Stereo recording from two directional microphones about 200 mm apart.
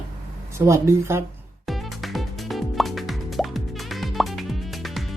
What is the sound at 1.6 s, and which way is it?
Music, centre (ahead or behind).